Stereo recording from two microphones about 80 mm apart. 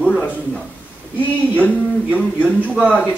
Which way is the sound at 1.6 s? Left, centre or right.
Centre.